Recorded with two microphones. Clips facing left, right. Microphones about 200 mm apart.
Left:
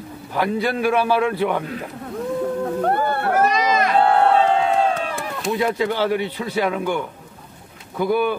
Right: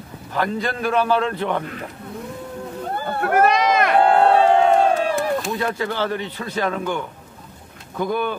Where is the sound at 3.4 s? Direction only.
60° right (ahead or behind).